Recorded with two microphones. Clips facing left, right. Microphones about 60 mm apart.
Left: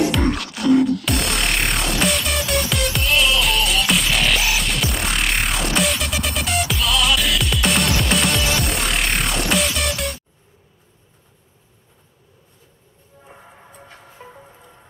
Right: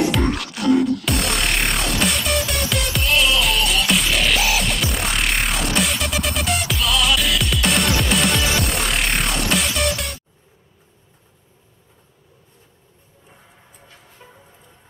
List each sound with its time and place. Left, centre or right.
0.1 s music: centre
13.3 s music: left